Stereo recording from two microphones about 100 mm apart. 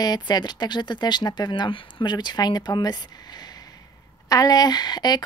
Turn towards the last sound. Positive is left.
turn(degrees=45)  # may be behind; listen again after turning